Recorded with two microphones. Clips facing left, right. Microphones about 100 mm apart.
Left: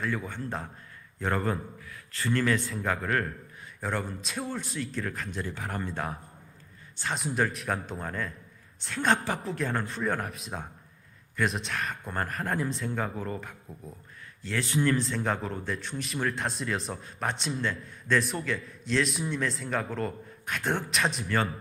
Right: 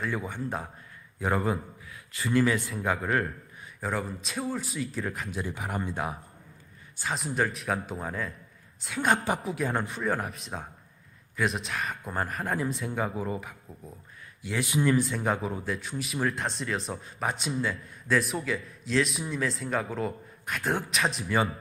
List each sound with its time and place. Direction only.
0.1 s speech: 15° right (ahead or behind)
7.0 s speech: centre (ahead or behind)
9.4 s speech: 5° right (ahead or behind)
10.0 s speech: centre (ahead or behind)
14.4 s speech: 15° right (ahead or behind)